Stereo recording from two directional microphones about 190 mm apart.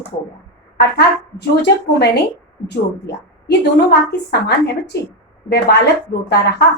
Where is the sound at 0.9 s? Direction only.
60° left (ahead or behind).